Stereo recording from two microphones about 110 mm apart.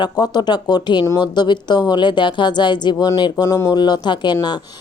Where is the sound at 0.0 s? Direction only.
40° left (ahead or behind).